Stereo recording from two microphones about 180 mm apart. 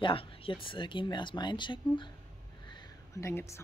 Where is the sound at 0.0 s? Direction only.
30° left (ahead or behind).